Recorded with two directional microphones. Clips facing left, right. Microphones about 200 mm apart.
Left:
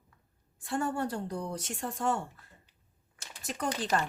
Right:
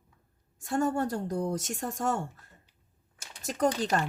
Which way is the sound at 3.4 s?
40° right (ahead or behind).